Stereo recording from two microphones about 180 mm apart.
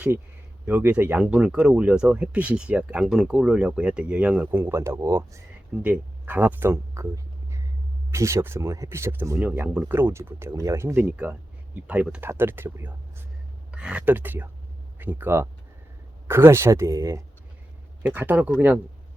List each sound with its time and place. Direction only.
0.6 s speech: 10° right (ahead or behind)
8.1 s speech: 15° right (ahead or behind)